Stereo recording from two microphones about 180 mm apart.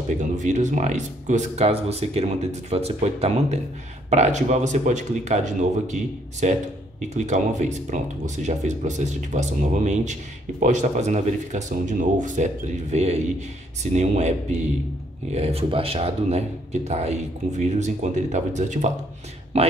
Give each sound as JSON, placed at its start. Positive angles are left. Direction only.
{"t": 0.2, "sound": "speech", "side_deg": -40}